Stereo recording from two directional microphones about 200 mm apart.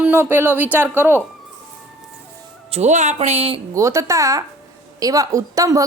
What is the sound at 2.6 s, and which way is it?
Speech, 35° right (ahead or behind).